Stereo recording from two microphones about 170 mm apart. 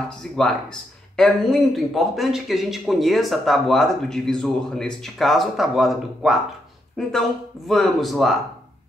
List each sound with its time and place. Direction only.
0.2 s speech: 5° left (ahead or behind)